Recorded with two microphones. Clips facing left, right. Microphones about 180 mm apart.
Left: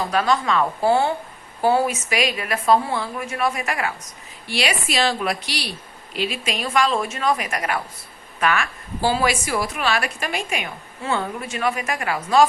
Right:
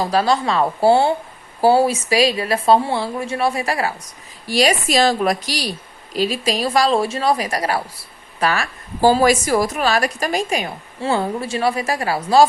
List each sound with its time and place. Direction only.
0.0 s a woman's voice: 35° right (ahead or behind)